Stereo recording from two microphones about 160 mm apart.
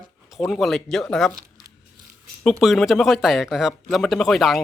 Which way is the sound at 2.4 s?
Centre (ahead or behind).